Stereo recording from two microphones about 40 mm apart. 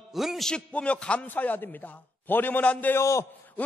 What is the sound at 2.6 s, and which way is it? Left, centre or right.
A man's voice, left.